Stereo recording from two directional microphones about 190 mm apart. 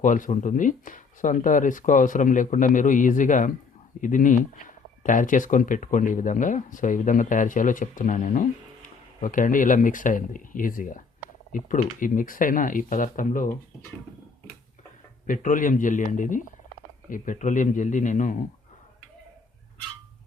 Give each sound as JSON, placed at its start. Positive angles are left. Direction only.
{"t": 0.0, "sound": "speech", "side_deg": 45}
{"t": 15.3, "sound": "a man's voice", "side_deg": 45}